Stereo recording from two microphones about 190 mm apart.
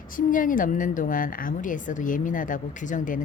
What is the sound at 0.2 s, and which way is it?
A woman's voice, 45° left (ahead or behind).